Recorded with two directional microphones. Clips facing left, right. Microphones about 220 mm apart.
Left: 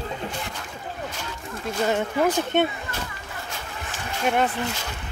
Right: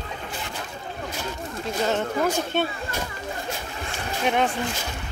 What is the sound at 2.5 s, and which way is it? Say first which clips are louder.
Speech: left 6 dB; 20° left (ahead or behind).